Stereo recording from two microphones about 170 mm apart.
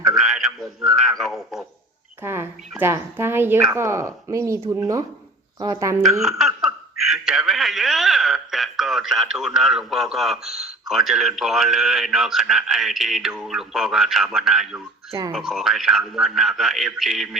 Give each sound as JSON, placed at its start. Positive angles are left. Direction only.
{"t": 0.2, "sound": "speech", "side_deg": 0}
{"t": 2.2, "sound": "speech", "side_deg": -15}
{"t": 6.1, "sound": "speech", "side_deg": -5}